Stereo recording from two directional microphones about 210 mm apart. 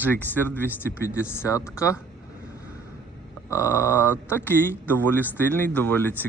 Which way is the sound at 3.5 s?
10° left (ahead or behind).